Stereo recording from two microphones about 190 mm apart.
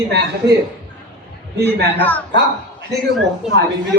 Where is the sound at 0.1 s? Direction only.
60° right (ahead or behind).